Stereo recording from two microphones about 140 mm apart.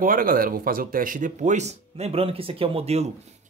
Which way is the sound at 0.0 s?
90° right.